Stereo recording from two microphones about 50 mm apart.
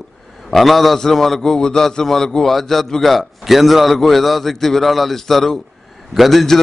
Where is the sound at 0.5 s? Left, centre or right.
Centre.